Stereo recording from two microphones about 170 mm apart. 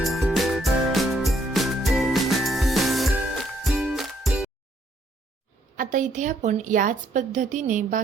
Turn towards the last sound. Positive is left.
turn(degrees=-45)  # may be behind; listen again after turning